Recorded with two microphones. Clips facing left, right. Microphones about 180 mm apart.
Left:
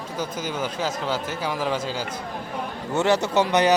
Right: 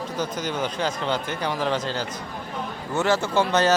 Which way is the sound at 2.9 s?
20° left (ahead or behind).